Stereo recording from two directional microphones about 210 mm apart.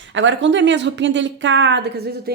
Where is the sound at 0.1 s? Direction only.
60° right (ahead or behind).